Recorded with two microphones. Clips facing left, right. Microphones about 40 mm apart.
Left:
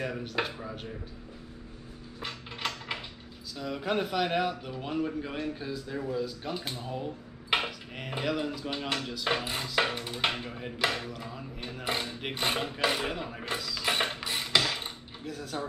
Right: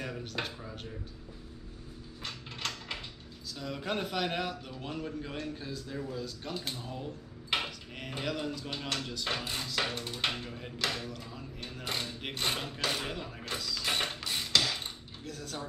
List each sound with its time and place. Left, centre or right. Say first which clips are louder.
0.2 s a man's voice: left 5 dB; centre
0.6 s speech: left 4 dB; left
2.2 s mechanisms: left 3 dB; centre
3.5 s a man's voice: left 5 dB; centre
13.6 s a man's voice: left 1 dB; centre
13.8 s a sound: left 4 dB; centre
15.2 s a man's voice: left 5 dB; centre